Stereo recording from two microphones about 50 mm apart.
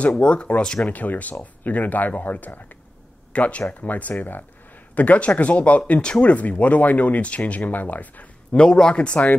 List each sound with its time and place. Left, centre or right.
0.0 s speech: left
0.8 s speech: left
8.5 s speech: centre
8.9 s speech: left